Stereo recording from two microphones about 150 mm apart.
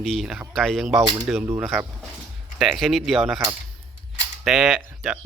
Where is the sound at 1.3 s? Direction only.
15° right (ahead or behind).